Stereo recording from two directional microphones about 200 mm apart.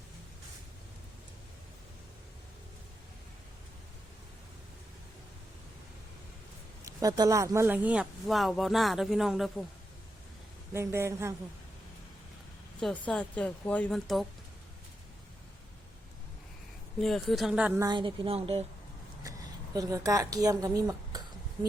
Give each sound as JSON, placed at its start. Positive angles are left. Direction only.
{"t": 6.8, "sound": "speech", "side_deg": -20}
{"t": 10.8, "sound": "speech", "side_deg": -15}
{"t": 13.1, "sound": "speech", "side_deg": 5}
{"t": 17.0, "sound": "speech", "side_deg": 0}
{"t": 17.8, "sound": "a woman's voice", "side_deg": -25}
{"t": 19.7, "sound": "speech", "side_deg": -15}